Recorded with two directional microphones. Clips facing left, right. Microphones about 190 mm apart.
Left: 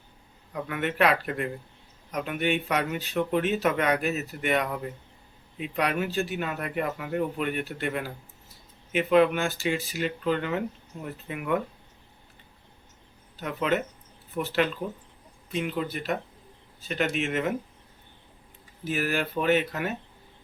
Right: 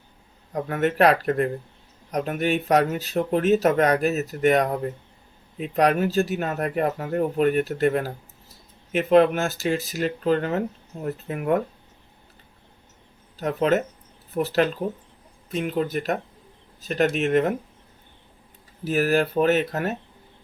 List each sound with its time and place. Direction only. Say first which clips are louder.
0.5 s speech: right 6 dB; 40° right (ahead or behind)
13.4 s speech: right 6 dB; 40° right (ahead or behind)
18.9 s speech: right 7 dB; 40° right (ahead or behind)